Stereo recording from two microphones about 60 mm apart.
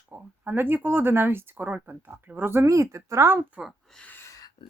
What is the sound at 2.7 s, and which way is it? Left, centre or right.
Speech, right.